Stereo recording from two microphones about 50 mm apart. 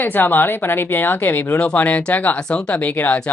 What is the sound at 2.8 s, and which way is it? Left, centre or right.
Speech, left.